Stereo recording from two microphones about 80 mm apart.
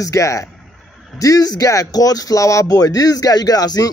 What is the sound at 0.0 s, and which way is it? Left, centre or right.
A man's voice, left.